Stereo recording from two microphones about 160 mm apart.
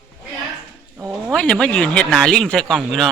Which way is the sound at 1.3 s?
5° left (ahead or behind).